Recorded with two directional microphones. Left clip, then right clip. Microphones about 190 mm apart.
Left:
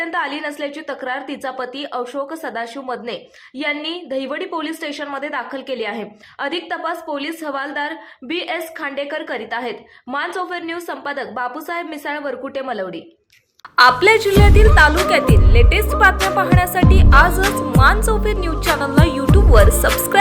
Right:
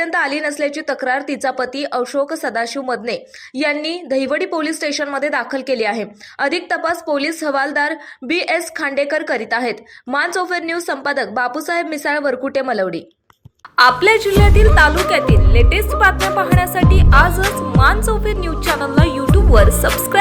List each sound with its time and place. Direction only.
0.0 s a woman's voice: 15° right (ahead or behind)
13.7 s a woman's voice: centre (ahead or behind)